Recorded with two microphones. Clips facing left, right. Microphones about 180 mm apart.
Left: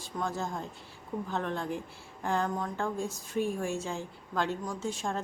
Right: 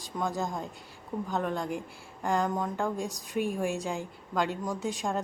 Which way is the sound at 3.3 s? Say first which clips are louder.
Right 2 dB; centre (ahead or behind).